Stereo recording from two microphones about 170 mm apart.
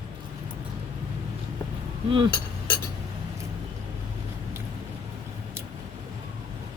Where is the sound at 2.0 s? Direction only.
30° right (ahead or behind).